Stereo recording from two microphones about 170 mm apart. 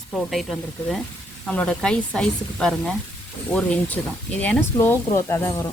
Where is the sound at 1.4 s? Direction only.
5° left (ahead or behind).